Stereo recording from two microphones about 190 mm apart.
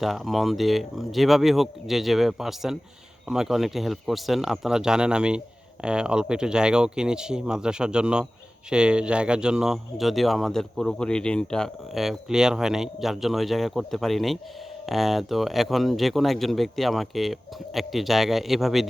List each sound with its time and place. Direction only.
0.0 s speech: centre (ahead or behind)